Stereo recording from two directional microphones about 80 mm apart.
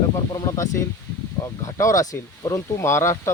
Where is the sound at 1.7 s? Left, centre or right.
Left.